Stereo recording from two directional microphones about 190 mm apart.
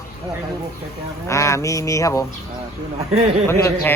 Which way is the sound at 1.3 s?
15° left (ahead or behind).